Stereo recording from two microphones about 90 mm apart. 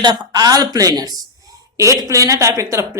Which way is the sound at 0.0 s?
50° right (ahead or behind).